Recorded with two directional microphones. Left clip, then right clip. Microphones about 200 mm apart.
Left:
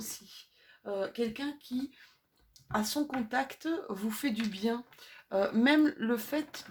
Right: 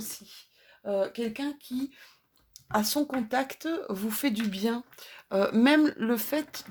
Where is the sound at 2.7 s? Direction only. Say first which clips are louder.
Right 5 dB; 45° right (ahead or behind).